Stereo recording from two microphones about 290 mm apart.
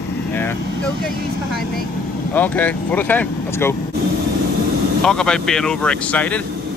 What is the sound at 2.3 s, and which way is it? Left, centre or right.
Speech, centre.